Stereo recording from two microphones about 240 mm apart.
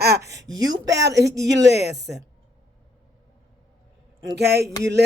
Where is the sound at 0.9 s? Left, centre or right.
Right.